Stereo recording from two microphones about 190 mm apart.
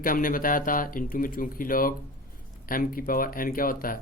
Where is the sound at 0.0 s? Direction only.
45° left (ahead or behind).